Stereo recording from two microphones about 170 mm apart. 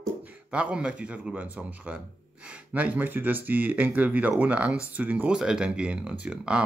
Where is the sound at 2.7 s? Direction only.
10° right (ahead or behind).